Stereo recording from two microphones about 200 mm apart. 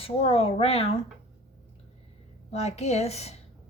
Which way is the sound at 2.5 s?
35° left (ahead or behind).